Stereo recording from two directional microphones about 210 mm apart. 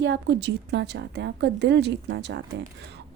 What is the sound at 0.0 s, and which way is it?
A woman's voice, 55° right (ahead or behind).